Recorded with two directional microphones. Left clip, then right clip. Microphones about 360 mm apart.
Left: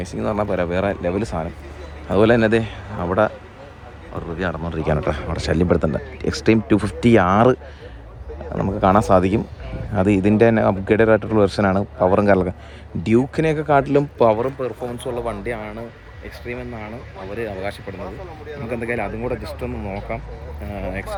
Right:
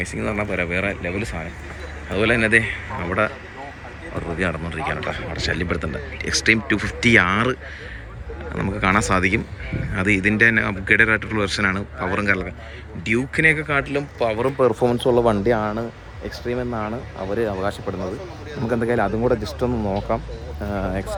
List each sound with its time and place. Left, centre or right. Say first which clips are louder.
0.0 s speech: left 2 dB; centre
4.4 s speech: even; centre
14.6 s speech: right 8 dB; centre